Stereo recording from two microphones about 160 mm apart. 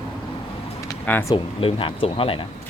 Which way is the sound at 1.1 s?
10° left (ahead or behind).